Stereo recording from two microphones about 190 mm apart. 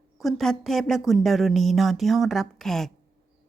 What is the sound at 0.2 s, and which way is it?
Speech, centre (ahead or behind).